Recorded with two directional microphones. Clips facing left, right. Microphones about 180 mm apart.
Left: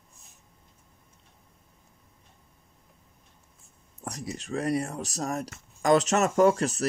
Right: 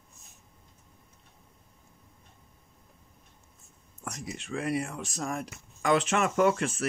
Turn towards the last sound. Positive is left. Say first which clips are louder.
# left 3 dB
turn(degrees=40)  # may be behind; listen again after turning